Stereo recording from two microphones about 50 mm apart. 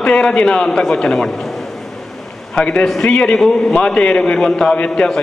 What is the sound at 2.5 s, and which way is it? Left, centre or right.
Speech, left.